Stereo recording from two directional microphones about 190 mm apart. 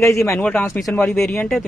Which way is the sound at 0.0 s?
15° left (ahead or behind).